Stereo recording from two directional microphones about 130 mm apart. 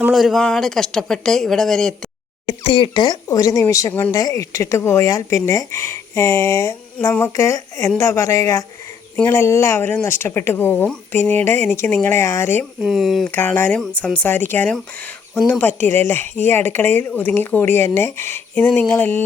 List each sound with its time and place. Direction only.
0.1 s speech: centre (ahead or behind)
2.5 s speech: 40° left (ahead or behind); by 12.6 s 20° left (ahead or behind)
12.8 s speech: centre (ahead or behind)
13.2 s speech: 15° left (ahead or behind)